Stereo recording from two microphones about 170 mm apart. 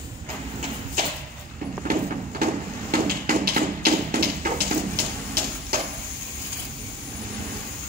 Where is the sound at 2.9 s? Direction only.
60° right (ahead or behind).